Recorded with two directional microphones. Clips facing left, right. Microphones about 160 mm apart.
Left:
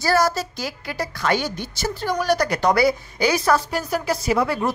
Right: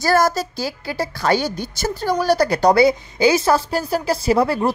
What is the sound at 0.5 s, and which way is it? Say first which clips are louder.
Speech: right 4 dB; 30° right (ahead or behind).